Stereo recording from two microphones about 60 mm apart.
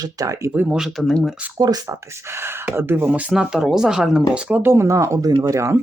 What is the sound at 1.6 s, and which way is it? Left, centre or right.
Speech, right.